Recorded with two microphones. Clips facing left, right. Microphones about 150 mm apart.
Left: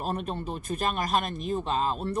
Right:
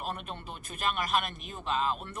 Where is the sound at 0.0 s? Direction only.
40° left (ahead or behind).